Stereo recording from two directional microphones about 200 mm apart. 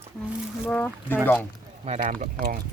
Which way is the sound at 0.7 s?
10° left (ahead or behind).